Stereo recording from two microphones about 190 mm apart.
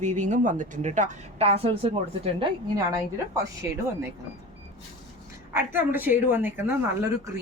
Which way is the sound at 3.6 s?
10° right (ahead or behind).